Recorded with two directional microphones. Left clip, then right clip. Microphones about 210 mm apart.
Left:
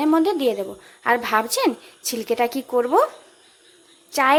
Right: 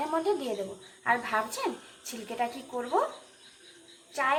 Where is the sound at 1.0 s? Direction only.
55° left (ahead or behind).